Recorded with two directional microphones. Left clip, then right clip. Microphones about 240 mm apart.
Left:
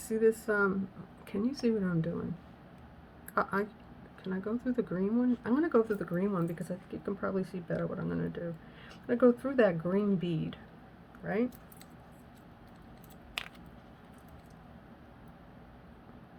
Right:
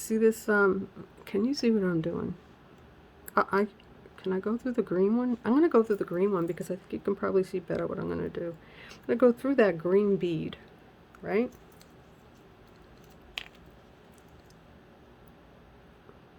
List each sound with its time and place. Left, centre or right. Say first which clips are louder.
0.0 s speech: right 2 dB; right
3.2 s speech: right 5 dB; right